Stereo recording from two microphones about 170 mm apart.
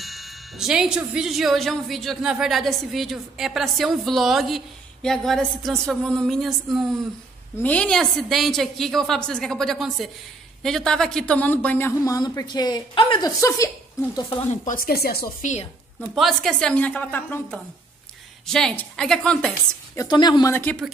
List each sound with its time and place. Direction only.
0.0 s speech: centre (ahead or behind)
12.0 s a woman's voice: 20° left (ahead or behind)
14.5 s speech: 50° left (ahead or behind)
16.2 s a woman's voice: centre (ahead or behind)
20.0 s a woman's voice: 25° left (ahead or behind)
20.5 s a woman's voice: 10° left (ahead or behind)